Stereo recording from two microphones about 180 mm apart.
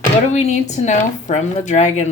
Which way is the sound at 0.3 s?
40° left (ahead or behind).